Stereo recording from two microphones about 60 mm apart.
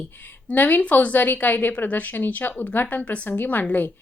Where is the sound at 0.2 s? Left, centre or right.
Left.